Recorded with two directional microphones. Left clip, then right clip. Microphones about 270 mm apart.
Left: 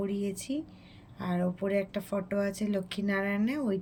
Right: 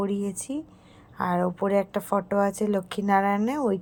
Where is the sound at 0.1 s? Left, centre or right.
Centre.